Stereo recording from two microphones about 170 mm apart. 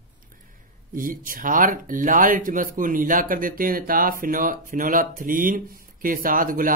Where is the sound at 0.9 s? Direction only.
55° right (ahead or behind).